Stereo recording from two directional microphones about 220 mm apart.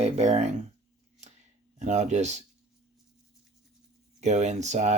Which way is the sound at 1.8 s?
30° right (ahead or behind).